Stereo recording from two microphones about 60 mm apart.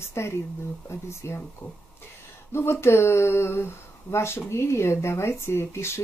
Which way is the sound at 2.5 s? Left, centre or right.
Left.